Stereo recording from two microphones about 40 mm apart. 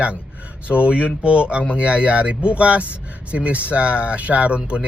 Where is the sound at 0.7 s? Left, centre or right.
Right.